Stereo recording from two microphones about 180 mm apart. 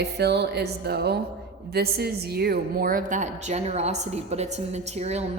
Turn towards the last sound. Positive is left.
turn(degrees=-35)  # may be behind; listen again after turning